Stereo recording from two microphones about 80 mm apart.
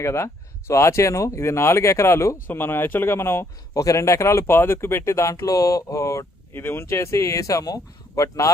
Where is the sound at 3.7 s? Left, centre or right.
Left.